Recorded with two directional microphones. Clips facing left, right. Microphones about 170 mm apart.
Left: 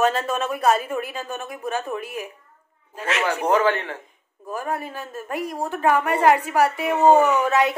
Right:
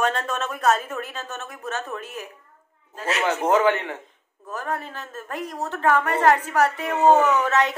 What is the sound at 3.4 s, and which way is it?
Speech, 20° right (ahead or behind).